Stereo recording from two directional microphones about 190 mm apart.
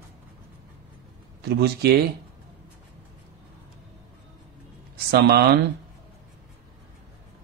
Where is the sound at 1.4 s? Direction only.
60° right (ahead or behind).